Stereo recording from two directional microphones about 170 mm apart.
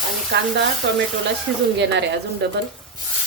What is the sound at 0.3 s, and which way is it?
Speech, 90° right.